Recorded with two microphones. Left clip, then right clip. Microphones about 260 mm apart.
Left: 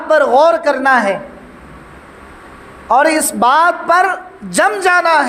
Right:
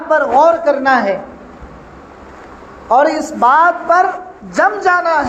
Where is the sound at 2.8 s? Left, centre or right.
Left.